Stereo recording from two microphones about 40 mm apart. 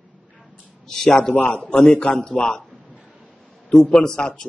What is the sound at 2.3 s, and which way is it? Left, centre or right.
Speech, centre.